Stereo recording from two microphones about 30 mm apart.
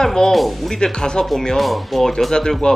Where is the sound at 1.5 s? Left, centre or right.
Centre.